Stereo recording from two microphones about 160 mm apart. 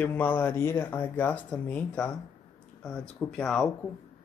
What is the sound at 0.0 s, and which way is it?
Speech, 10° left (ahead or behind).